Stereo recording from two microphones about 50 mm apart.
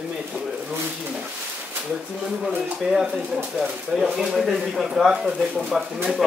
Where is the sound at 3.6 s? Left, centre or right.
Centre.